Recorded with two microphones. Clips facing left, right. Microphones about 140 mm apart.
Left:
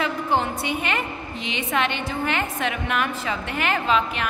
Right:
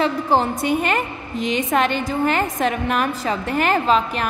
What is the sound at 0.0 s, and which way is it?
A woman's voice, 35° right (ahead or behind).